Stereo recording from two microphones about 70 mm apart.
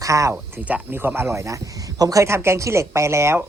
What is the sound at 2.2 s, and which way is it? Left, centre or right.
A woman's voice, right.